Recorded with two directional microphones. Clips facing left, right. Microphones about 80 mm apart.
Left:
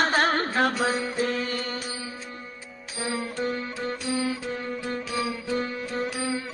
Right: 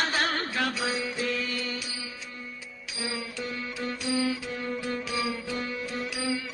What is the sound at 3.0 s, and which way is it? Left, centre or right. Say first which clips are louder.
Music: left 5 dB; left.